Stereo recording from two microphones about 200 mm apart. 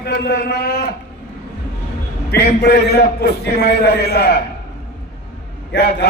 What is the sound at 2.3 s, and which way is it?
A man's voice, 55° left (ahead or behind).